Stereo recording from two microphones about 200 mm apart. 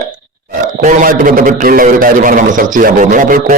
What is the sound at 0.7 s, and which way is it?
A man's voice, 40° right (ahead or behind).